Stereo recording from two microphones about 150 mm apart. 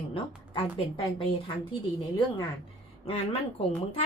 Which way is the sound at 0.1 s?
35° left (ahead or behind).